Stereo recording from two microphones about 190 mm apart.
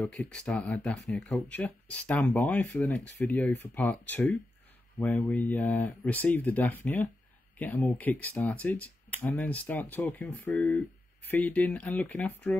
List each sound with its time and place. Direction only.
0.0 s speech: 5° left (ahead or behind)